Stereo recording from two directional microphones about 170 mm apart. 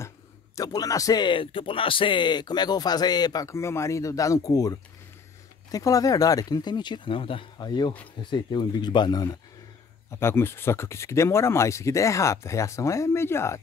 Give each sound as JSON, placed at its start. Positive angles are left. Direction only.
{"t": 0.6, "sound": "speech", "side_deg": 20}